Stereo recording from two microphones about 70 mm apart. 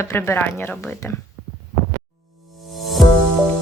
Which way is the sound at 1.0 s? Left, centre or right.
Left.